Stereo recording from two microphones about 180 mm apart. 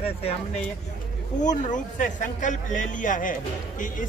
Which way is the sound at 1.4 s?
45° left (ahead or behind).